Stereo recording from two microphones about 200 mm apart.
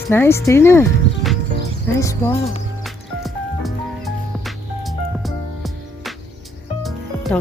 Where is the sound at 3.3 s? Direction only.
Centre (ahead or behind).